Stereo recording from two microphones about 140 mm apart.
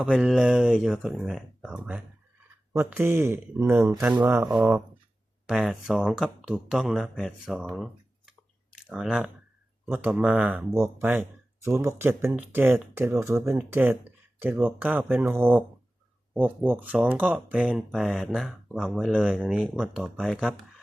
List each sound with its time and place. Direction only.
0.0 s speech: 5° right (ahead or behind)
5.5 s speech: centre (ahead or behind)
8.9 s speech: 5° right (ahead or behind)